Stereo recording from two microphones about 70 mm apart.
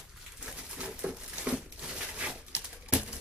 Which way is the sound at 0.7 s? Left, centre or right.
Centre.